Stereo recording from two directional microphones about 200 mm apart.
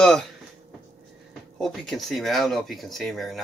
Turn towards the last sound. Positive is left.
turn(degrees=0)  # may be behind; listen again after turning